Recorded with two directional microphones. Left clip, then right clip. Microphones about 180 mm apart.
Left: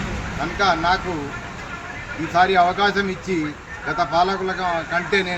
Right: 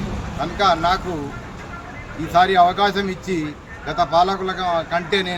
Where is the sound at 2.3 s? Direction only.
25° right (ahead or behind).